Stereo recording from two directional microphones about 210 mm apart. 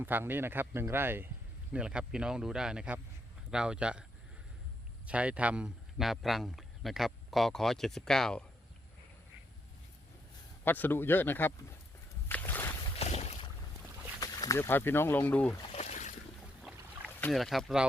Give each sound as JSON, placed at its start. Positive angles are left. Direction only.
{"t": 0.0, "sound": "a man's voice", "side_deg": -10}
{"t": 5.0, "sound": "a man's voice", "side_deg": -5}
{"t": 10.6, "sound": "speech", "side_deg": 10}
{"t": 12.3, "sound": "a sound", "side_deg": 10}
{"t": 13.0, "sound": "boat", "side_deg": 30}
{"t": 14.2, "sound": "speech", "side_deg": 15}
{"t": 15.6, "sound": "a sound", "side_deg": 30}
{"t": 17.1, "sound": "speech", "side_deg": 10}